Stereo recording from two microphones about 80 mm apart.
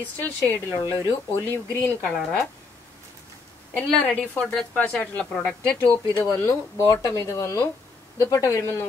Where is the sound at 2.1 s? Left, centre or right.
Centre.